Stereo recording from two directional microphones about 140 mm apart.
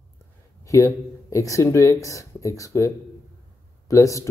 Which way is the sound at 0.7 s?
20° left (ahead or behind).